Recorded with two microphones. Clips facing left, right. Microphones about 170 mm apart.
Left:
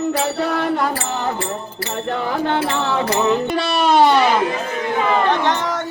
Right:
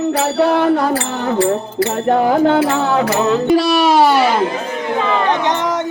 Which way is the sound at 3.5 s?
Centre (ahead or behind).